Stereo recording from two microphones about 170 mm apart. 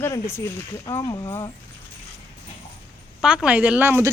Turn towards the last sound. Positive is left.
turn(degrees=-10)  # may be behind; listen again after turning